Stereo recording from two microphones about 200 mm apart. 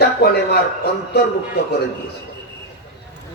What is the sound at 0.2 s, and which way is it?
Speech, 50° left (ahead or behind).